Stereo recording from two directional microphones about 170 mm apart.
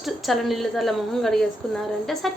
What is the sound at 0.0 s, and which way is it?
A woman's voice, centre (ahead or behind).